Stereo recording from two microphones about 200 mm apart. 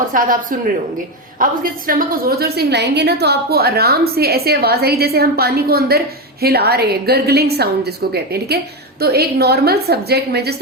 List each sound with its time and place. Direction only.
0.1 s a woman's voice: 45° right (ahead or behind)
1.9 s a woman's voice: 45° right (ahead or behind)